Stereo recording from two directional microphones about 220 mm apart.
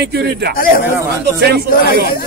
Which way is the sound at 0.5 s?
40° left (ahead or behind).